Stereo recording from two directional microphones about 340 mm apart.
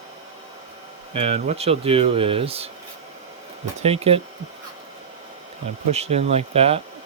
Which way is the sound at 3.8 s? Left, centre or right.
Centre.